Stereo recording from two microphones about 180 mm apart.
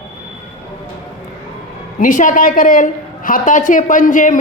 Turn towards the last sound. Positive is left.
turn(degrees=45)  # may be behind; listen again after turning